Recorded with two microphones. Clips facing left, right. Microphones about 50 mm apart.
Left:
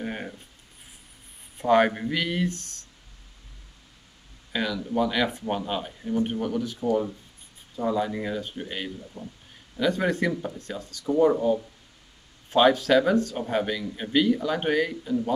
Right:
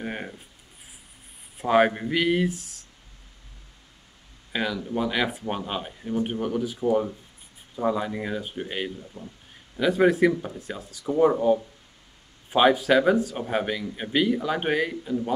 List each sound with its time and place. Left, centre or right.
0.0 s writing: centre
1.6 s speech: centre
4.5 s speech: centre
9.1 s speech: right
9.8 s speech: centre